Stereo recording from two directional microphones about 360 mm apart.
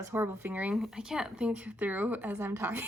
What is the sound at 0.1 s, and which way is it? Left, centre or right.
Speech, centre.